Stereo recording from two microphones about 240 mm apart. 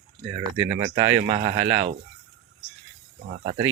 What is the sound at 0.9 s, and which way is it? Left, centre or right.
Speech, right.